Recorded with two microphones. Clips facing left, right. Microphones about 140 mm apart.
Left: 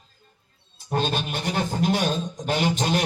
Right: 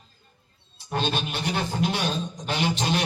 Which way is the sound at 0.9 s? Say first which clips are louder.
Left 2 dB; 45° left (ahead or behind).